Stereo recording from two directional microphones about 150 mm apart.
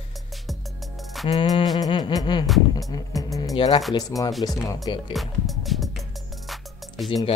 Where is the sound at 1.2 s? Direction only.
25° left (ahead or behind).